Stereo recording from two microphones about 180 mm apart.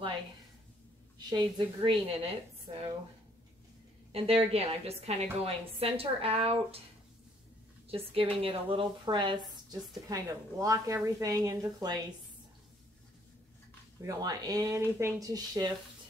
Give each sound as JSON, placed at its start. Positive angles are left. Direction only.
{"t": 1.1, "sound": "a woman's voice", "side_deg": -25}
{"t": 4.1, "sound": "a woman's voice", "side_deg": -35}
{"t": 7.9, "sound": "a woman's voice", "side_deg": -30}
{"t": 14.0, "sound": "a woman's voice", "side_deg": -20}